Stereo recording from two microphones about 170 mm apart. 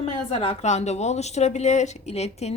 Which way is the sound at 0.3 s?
35° left (ahead or behind).